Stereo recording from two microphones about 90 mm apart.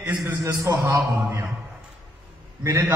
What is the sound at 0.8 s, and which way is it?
Speech, 30° right (ahead or behind).